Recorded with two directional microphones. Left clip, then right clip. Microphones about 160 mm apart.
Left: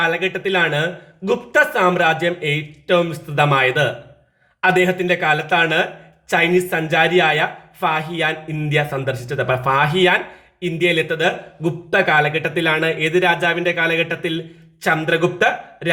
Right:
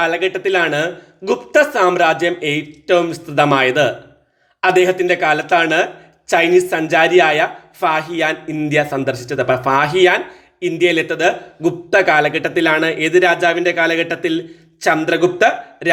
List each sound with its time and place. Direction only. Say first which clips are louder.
0.0 s speech: right 2 dB; 30° right (ahead or behind)